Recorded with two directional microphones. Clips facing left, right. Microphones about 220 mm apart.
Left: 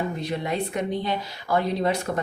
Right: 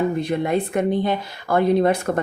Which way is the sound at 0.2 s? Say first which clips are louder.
Right 6 dB; 50° right (ahead or behind).